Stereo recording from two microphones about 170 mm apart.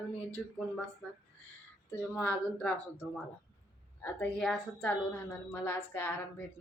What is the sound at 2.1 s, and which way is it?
Speech, 10° left (ahead or behind).